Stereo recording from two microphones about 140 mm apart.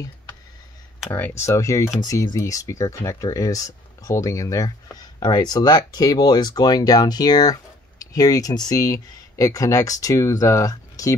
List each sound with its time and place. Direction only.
1.1 s speech: 15° left (ahead or behind)